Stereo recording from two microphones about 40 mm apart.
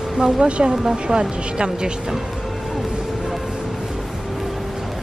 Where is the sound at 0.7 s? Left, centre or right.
Centre.